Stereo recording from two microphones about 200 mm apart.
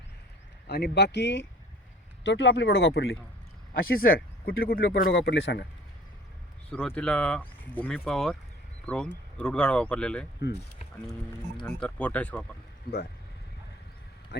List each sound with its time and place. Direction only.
0.7 s speech: 55° left (ahead or behind)
3.8 s speech: 45° left (ahead or behind)
5.1 s speech: 65° left (ahead or behind)
6.7 s speech: 5° left (ahead or behind)
11.6 s speech: 5° left (ahead or behind)